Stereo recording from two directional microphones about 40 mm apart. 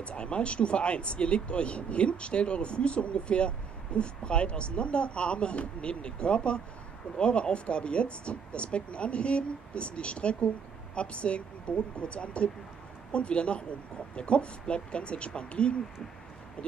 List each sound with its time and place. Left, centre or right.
0.0 s speech: left